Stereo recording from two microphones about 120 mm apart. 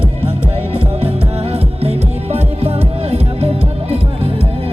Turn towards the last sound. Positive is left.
turn(degrees=-55)  # may be behind; listen again after turning